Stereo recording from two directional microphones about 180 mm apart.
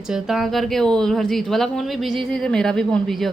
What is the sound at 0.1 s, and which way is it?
A woman's voice, centre (ahead or behind).